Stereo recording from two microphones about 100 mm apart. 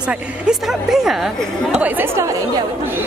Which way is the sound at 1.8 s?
20° right (ahead or behind).